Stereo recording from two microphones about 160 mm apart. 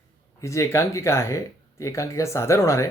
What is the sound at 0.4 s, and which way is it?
Speech, 20° left (ahead or behind).